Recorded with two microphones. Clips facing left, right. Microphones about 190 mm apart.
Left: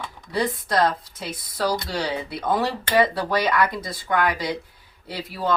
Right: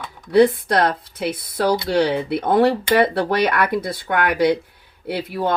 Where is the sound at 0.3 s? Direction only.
65° right (ahead or behind).